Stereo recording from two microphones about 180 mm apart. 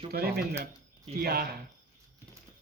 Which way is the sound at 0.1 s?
55° right (ahead or behind).